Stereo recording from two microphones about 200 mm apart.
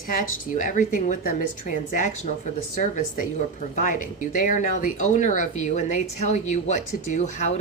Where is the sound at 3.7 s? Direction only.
40° left (ahead or behind).